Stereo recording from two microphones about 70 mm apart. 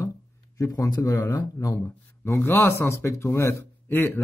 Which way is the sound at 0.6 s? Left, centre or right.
Left.